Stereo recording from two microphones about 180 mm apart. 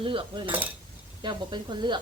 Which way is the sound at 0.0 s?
30° right (ahead or behind).